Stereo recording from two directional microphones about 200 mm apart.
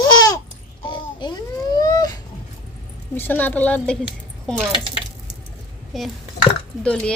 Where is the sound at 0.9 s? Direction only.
20° left (ahead or behind).